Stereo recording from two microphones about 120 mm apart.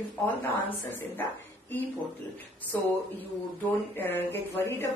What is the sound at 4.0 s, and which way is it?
Speech, 15° left (ahead or behind).